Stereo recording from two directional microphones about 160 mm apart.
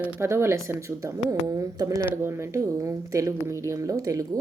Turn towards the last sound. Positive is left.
turn(degrees=-20)  # may be behind; listen again after turning